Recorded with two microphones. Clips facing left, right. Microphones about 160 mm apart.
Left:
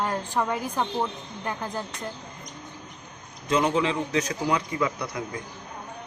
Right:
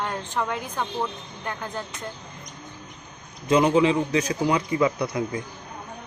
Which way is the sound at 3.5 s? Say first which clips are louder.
Right 5 dB; 10° right (ahead or behind).